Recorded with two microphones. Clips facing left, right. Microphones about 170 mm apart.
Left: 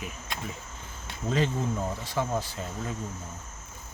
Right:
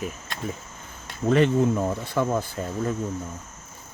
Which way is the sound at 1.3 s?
65° right (ahead or behind).